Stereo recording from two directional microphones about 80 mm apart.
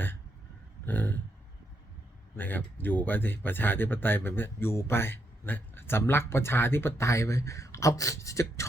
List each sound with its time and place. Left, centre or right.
0.9 s speech: left
2.3 s speech: left